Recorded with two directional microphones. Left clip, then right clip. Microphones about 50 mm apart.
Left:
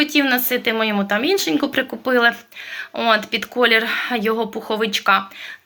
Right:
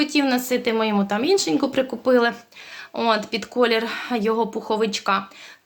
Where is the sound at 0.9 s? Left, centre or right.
Right.